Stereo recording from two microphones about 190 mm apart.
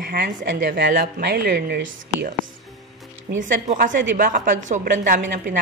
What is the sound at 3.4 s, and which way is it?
A woman's voice, 45° right (ahead or behind).